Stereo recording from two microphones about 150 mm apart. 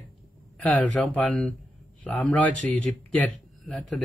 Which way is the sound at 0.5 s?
10° left (ahead or behind).